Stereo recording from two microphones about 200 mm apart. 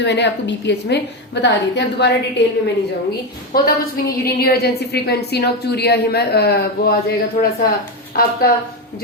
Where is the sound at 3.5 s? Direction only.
50° left (ahead or behind).